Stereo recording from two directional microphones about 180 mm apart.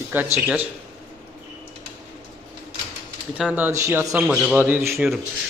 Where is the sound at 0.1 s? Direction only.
10° right (ahead or behind).